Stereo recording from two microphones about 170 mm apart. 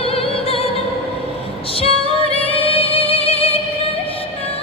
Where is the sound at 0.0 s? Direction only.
35° left (ahead or behind).